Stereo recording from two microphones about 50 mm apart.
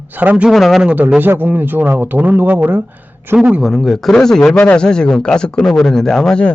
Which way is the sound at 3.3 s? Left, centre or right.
Right.